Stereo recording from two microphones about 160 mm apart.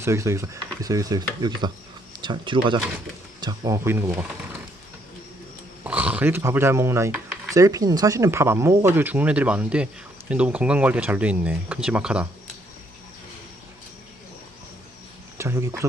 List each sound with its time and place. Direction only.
0.0 s speech: 15° right (ahead or behind)
5.8 s speech: 10° right (ahead or behind)
15.4 s a sound: 15° right (ahead or behind)